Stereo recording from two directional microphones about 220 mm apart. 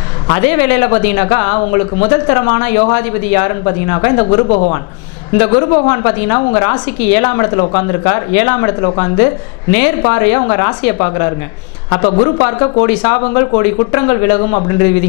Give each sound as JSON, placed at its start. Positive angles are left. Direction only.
{"t": 0.3, "sound": "speech", "side_deg": 15}